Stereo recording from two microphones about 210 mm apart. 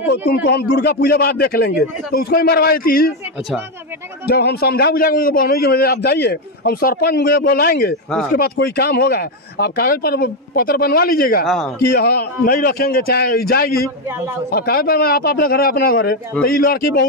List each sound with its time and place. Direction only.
0.1 s a man's voice: 50° left (ahead or behind)
4.3 s a man's voice: 50° left (ahead or behind)
11.4 s speech: centre (ahead or behind)
11.8 s a man's voice: 50° left (ahead or behind)